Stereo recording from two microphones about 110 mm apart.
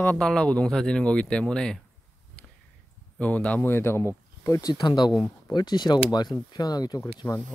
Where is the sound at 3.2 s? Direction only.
15° left (ahead or behind).